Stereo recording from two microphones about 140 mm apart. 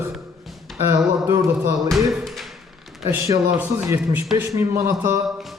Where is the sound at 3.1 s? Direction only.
20° right (ahead or behind).